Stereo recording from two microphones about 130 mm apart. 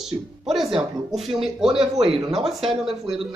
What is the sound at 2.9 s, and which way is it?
Speech, 45° right (ahead or behind).